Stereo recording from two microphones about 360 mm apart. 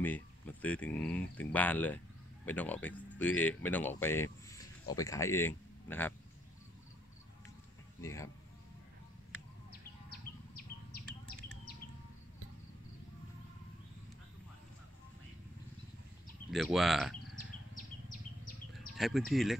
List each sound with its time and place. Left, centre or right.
0.0 s speech: centre
8.0 s speech: centre
10.5 s a sound: left
16.4 s speech: centre
18.9 s speech: centre